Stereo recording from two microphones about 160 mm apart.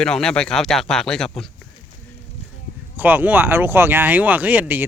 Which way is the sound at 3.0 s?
10° right (ahead or behind).